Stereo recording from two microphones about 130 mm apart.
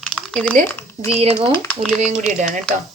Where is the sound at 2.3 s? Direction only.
75° right (ahead or behind).